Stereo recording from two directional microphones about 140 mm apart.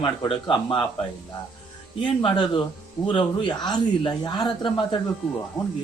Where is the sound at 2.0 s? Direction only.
35° left (ahead or behind).